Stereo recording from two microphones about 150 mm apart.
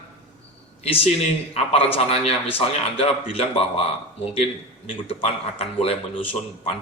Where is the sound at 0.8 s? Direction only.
40° left (ahead or behind).